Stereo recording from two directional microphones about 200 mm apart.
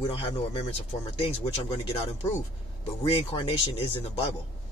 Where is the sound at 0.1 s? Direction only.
25° left (ahead or behind).